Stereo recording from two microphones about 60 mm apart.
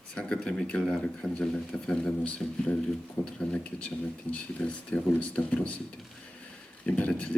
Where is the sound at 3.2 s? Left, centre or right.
Left.